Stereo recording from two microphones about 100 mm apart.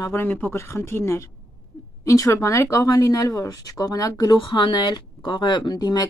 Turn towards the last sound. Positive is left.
turn(degrees=45)  # may be behind; listen again after turning